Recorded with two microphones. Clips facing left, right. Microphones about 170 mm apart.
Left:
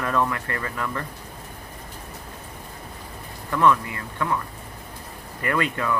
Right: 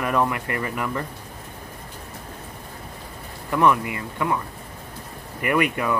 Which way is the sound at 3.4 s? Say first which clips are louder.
Right 1 dB; 15° right (ahead or behind).